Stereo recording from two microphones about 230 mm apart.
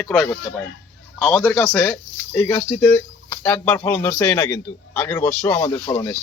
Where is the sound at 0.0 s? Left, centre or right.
Centre.